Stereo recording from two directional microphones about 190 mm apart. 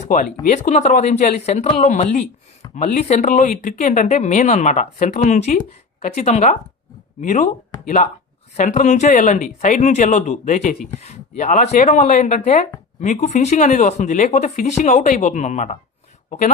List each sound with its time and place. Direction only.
0.0 s speech: 35° left (ahead or behind)